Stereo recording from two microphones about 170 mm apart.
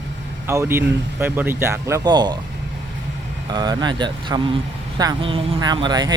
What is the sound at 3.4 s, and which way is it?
Speech, 25° right (ahead or behind).